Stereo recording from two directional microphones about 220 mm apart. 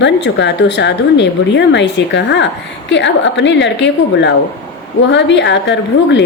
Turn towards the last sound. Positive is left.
turn(degrees=55)  # may be behind; listen again after turning